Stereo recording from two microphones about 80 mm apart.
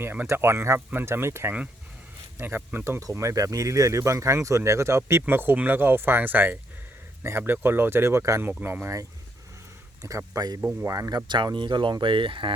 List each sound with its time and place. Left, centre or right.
0.0 s speech: right
3.0 s speech: right
10.0 s speech: right
10.6 s speech: centre
10.8 s speech: right
11.5 s speech: right